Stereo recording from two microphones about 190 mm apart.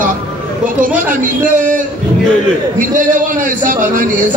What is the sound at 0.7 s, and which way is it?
A man's voice, 45° right (ahead or behind).